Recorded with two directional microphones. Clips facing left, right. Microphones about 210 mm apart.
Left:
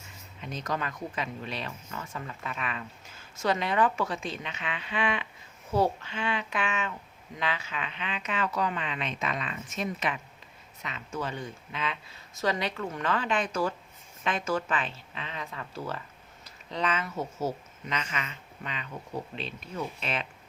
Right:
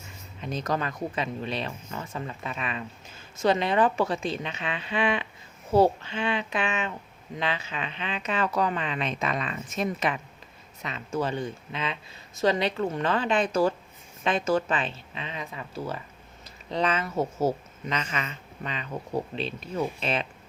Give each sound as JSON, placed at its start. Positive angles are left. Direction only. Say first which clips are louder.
{"t": 0.4, "sound": "speech", "louder": "right 4 dB", "side_deg": -35}
{"t": 16.7, "sound": "speech", "louder": "right 5 dB", "side_deg": -35}